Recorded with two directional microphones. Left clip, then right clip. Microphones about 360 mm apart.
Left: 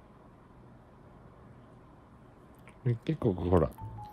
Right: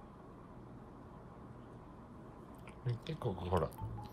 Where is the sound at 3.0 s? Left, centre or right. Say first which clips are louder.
Left 10 dB; left.